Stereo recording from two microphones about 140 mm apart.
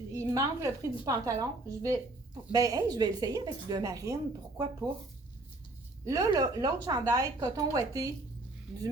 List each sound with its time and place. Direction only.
0.1 s a woman's voice: 20° right (ahead or behind)
6.1 s a woman's voice: 25° right (ahead or behind)